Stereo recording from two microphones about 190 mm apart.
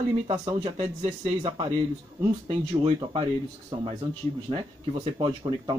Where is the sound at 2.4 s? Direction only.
30° right (ahead or behind).